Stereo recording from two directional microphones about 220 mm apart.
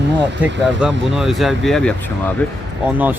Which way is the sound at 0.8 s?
Centre (ahead or behind).